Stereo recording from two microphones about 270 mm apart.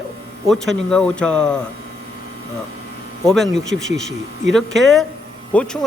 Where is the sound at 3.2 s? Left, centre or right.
Centre.